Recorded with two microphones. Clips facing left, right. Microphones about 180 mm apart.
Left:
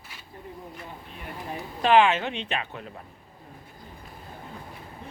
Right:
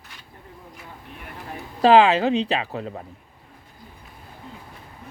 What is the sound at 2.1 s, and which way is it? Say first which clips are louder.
Speech: right 9 dB; 35° right (ahead or behind).